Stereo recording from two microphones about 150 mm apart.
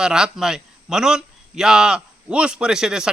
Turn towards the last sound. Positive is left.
turn(degrees=-5)  # may be behind; listen again after turning